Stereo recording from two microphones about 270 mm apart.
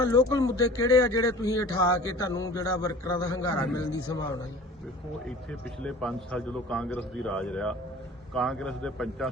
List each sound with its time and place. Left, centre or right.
0.0 s speech: centre
5.8 s a man's voice: centre